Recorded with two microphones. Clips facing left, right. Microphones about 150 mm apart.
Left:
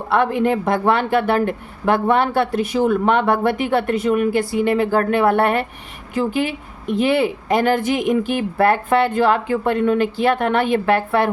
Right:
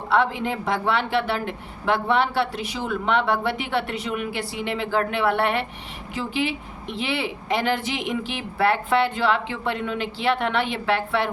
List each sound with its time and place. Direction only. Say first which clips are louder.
0.1 s speech: left 5 dB; 55° left (ahead or behind)